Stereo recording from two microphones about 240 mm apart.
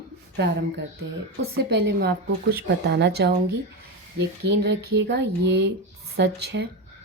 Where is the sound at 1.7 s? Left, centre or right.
Right.